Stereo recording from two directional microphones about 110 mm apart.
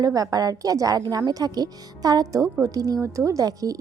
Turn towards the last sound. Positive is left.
turn(degrees=-30)  # may be behind; listen again after turning